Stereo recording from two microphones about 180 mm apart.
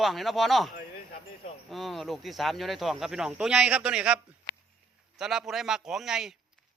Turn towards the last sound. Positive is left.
turn(degrees=-5)  # may be behind; listen again after turning